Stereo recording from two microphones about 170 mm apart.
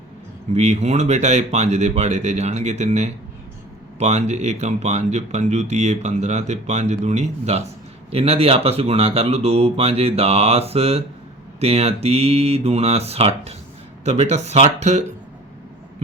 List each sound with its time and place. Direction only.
0.5 s speech: 40° right (ahead or behind)